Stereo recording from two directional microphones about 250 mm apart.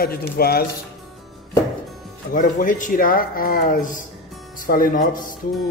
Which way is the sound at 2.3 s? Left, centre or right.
Left.